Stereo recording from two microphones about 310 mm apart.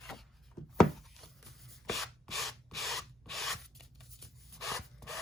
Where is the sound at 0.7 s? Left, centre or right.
Centre.